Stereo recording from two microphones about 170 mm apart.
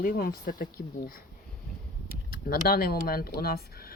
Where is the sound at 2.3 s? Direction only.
65° left (ahead or behind).